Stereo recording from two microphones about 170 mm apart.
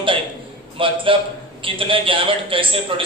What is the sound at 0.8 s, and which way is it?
A man's voice, 30° right (ahead or behind).